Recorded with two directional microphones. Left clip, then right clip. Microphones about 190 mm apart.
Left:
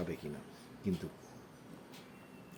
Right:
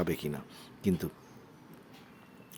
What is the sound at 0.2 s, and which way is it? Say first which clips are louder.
Speech: right 7 dB; 30° right (ahead or behind).